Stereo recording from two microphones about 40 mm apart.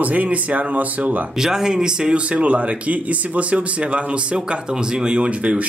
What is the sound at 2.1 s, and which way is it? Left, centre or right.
Speech, right.